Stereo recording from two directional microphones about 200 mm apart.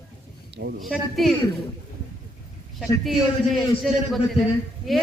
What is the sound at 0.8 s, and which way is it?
Speech, centre (ahead or behind).